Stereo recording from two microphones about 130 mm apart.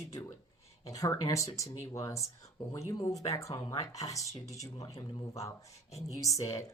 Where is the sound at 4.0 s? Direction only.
25° left (ahead or behind).